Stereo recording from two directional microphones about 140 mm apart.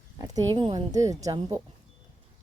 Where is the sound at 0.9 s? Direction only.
25° right (ahead or behind).